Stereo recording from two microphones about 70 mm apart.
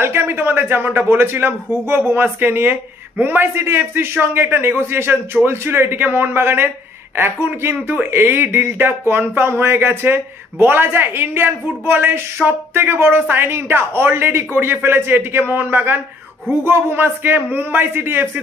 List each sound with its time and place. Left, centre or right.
0.0 s speech: right